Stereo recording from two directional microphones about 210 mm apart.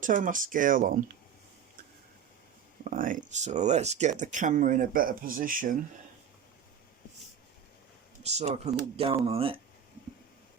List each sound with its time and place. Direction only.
0.0 s speech: 40° right (ahead or behind)
2.8 s speech: 40° right (ahead or behind)
8.2 s speech: 30° right (ahead or behind)